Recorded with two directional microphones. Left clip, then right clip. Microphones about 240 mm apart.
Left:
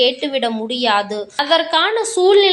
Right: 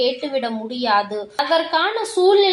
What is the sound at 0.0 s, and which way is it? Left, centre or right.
A woman's voice, left.